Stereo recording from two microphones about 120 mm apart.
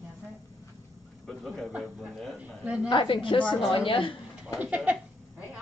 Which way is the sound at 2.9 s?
45° left (ahead or behind).